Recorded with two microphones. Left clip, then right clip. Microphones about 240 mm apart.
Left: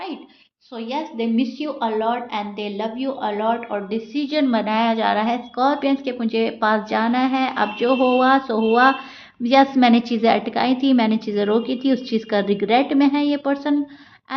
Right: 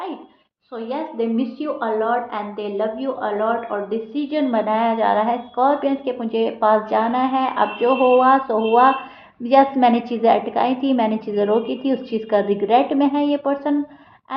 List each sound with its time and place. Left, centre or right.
0.9 s a woman's voice: left